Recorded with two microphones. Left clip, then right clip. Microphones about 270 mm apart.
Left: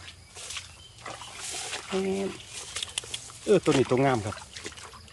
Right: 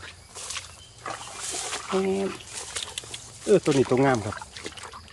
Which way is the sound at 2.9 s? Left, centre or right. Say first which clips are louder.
Left 1 dB; centre.